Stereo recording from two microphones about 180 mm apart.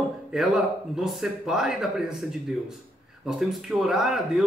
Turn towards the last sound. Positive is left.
turn(degrees=-5)  # may be behind; listen again after turning